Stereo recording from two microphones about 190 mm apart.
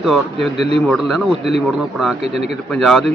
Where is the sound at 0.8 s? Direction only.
Centre (ahead or behind).